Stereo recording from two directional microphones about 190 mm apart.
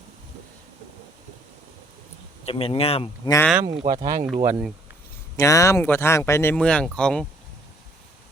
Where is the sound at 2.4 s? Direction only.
30° left (ahead or behind).